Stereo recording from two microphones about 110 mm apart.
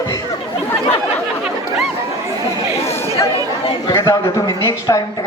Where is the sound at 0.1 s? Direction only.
30° left (ahead or behind).